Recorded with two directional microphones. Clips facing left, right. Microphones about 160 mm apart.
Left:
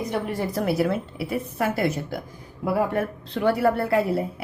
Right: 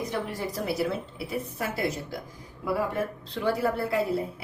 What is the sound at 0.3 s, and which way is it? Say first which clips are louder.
A woman's voice: left 6 dB; 60° left (ahead or behind).